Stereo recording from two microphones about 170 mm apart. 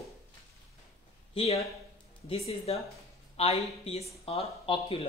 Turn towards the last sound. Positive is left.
turn(degrees=35)  # may be behind; listen again after turning